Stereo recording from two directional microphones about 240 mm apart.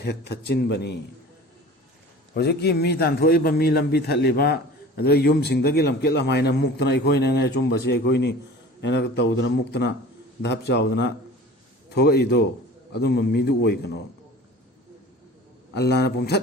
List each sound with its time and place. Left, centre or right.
0.0 s a man's voice: left
2.3 s a man's voice: left
15.7 s a man's voice: left